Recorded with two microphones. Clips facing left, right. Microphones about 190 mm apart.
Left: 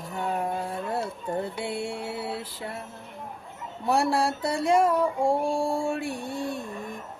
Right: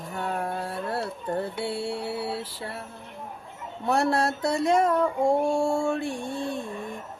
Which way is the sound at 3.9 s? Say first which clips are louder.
Even; 10° left (ahead or behind).